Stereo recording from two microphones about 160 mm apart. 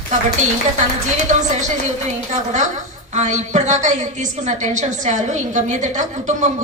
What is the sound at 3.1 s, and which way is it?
A woman's voice, 50° right (ahead or behind).